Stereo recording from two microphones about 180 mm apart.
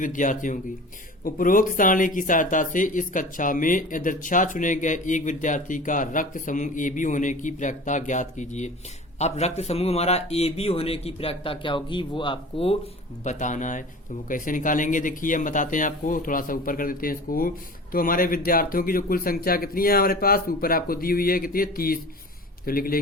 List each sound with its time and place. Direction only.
0.0 s a man's voice: 45° left (ahead or behind); by 12.7 s 30° left (ahead or behind)
13.2 s speech: 45° left (ahead or behind)